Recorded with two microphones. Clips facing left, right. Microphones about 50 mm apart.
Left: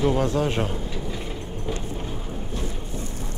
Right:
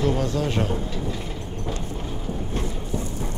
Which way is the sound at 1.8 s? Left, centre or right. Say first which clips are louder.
Even; centre.